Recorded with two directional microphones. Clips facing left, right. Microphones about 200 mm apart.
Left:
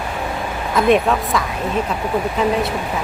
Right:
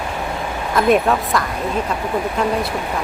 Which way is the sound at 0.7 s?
Centre (ahead or behind).